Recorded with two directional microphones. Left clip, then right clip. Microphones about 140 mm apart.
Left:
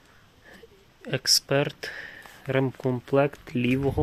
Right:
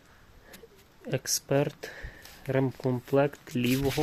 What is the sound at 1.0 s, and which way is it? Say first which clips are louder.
Speech: left 7 dB; centre (ahead or behind).